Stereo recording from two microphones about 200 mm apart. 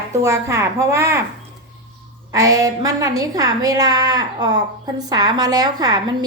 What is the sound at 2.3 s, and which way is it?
A woman's voice, 15° right (ahead or behind).